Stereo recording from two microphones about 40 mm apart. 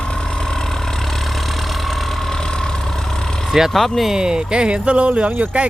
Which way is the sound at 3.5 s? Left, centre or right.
Centre.